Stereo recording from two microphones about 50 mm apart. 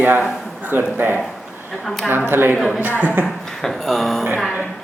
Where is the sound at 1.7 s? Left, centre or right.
Centre.